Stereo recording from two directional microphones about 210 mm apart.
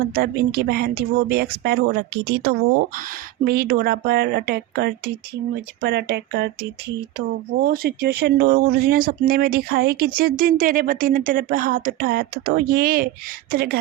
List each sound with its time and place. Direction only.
0.1 s speech: 45° right (ahead or behind)